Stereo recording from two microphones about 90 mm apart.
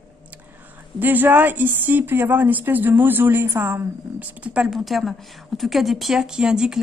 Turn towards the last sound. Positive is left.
turn(degrees=-10)  # may be behind; listen again after turning